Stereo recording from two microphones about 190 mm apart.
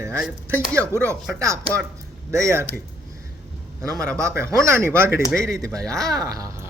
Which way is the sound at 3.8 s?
20° right (ahead or behind).